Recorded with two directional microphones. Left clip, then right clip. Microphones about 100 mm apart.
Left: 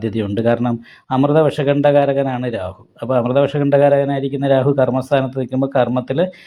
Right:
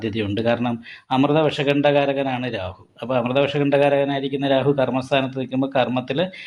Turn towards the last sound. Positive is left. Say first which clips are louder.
# left 4 dB
turn(degrees=45)  # may be behind; listen again after turning